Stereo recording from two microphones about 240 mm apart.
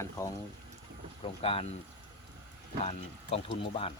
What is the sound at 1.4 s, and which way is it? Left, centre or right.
Speech, left.